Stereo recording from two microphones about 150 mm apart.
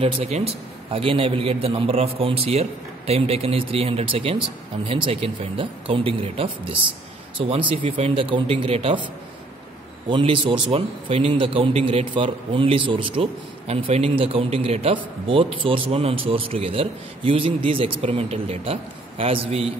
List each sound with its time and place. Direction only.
0.0 s a man's voice: 40° right (ahead or behind)
10.0 s speech: 35° right (ahead or behind)